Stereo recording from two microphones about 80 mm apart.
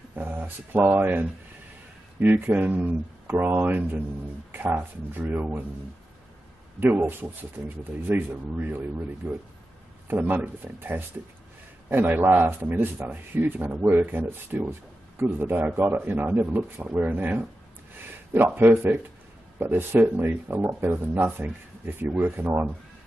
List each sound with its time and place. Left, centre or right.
0.1 s speech: right
6.8 s speech: right